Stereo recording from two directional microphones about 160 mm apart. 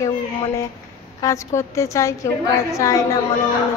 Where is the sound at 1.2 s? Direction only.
20° left (ahead or behind).